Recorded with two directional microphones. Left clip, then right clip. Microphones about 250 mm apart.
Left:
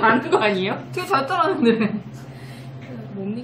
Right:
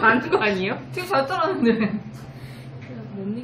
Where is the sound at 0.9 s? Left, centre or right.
Centre.